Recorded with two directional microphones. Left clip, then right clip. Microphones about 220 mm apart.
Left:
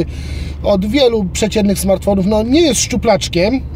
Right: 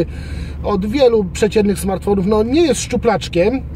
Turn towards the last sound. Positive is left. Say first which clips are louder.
# left 2 dB
turn(degrees=10)  # may be behind; listen again after turning